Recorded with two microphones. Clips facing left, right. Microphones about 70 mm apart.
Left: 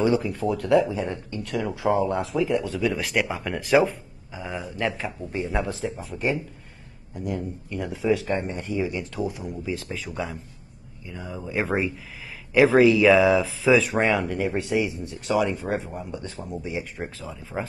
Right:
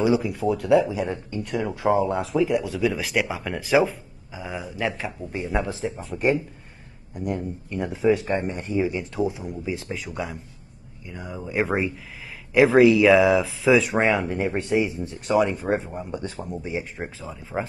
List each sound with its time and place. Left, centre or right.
0.0 s speech: centre
5.7 s speech: centre
7.2 s speech: right
9.3 s speech: centre
14.2 s speech: centre
14.5 s speech: right; by 17.4 s centre
17.4 s speech: centre